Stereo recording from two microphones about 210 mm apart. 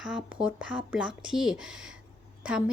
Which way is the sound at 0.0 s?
5° right (ahead or behind).